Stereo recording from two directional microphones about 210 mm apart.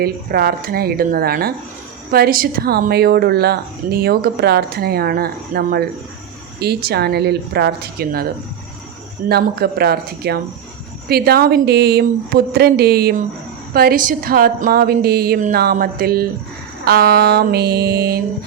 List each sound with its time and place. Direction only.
0.0 s a woman's voice: 45° right (ahead or behind)
9.3 s a woman's voice: 50° right (ahead or behind)